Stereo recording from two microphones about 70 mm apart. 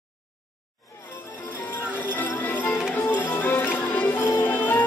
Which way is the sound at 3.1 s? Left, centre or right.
Left.